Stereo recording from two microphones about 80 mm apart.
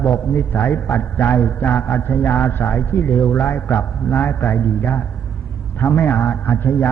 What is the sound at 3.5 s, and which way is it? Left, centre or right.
Speech, left.